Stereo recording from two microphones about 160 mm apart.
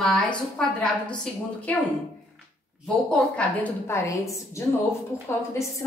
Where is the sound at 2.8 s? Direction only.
10° left (ahead or behind).